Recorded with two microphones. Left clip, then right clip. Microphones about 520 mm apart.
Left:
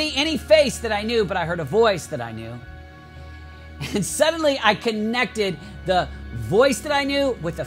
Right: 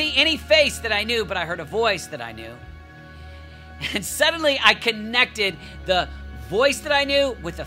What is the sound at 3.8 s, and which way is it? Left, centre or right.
Speech, left.